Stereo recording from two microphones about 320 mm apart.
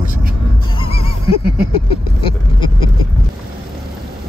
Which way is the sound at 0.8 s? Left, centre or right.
Centre.